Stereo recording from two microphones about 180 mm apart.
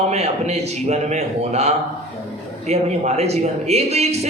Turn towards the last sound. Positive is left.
turn(degrees=-35)  # may be behind; listen again after turning